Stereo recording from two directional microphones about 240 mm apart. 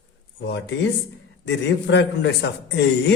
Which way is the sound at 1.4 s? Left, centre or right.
Left.